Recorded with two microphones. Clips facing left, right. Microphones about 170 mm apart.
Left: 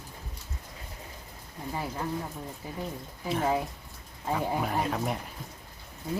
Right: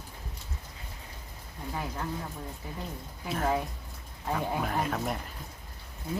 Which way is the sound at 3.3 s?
5° left (ahead or behind).